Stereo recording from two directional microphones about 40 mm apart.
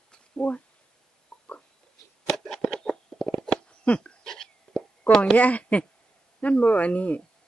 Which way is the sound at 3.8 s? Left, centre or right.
Left.